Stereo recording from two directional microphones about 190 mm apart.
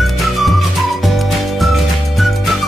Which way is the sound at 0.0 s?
Centre (ahead or behind).